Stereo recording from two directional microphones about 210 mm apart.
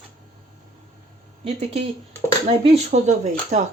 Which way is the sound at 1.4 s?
30° right (ahead or behind).